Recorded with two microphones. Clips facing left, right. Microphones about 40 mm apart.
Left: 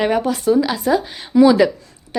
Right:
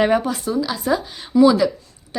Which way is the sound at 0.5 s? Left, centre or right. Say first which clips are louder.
Left 4 dB; left.